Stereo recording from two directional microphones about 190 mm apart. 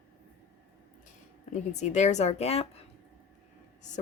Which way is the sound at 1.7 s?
35° left (ahead or behind).